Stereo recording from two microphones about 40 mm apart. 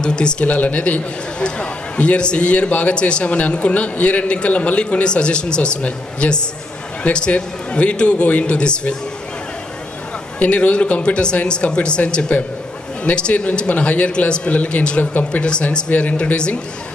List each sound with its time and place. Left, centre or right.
0.0 s a man's voice: left
0.4 s a man's voice: left
10.4 s a man's voice: left
16.1 s a man's voice: left